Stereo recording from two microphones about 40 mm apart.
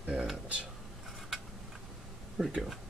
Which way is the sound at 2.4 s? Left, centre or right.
Right.